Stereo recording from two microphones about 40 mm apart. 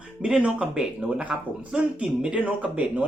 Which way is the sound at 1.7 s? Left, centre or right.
Right.